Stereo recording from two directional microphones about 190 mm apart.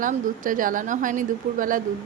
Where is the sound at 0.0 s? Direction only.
45° right (ahead or behind).